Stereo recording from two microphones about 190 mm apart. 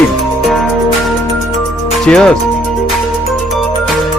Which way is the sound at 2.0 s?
5° left (ahead or behind).